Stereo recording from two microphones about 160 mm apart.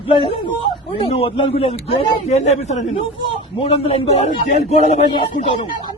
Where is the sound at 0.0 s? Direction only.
35° left (ahead or behind).